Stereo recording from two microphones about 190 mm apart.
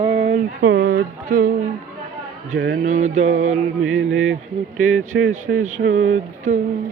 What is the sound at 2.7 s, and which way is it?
Speech, 40° right (ahead or behind).